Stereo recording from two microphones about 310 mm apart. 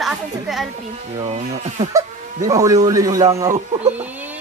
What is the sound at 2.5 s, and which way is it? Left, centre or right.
Speech, centre.